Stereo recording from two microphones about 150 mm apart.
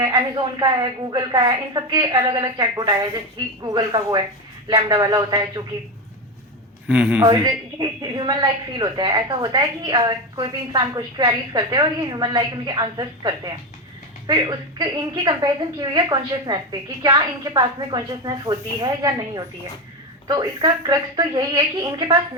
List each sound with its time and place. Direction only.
0.1 s a woman's voice: 30° right (ahead or behind)
6.8 s a man's voice: 5° right (ahead or behind)
7.2 s a woman's voice: 30° right (ahead or behind)